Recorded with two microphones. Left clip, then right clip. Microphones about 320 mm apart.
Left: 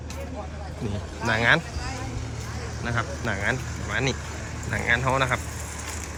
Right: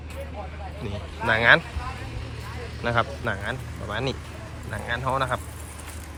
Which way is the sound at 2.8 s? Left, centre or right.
Centre.